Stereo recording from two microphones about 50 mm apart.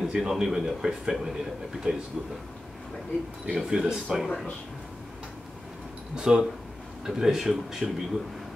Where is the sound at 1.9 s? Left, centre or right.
Right.